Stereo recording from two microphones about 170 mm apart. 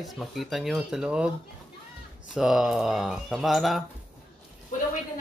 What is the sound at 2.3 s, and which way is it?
Speech, centre (ahead or behind).